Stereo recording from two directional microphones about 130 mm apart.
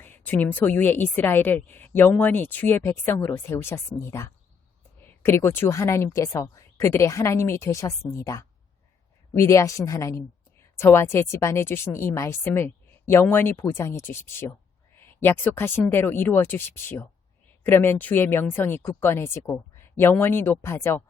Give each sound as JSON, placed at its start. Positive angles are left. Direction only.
{"t": 0.0, "sound": "a woman's voice", "side_deg": 15}